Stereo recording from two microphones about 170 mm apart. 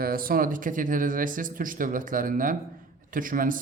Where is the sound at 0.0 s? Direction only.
60° right (ahead or behind).